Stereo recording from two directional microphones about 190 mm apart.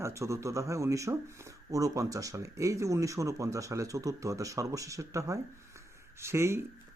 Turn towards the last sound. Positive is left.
turn(degrees=-15)  # may be behind; listen again after turning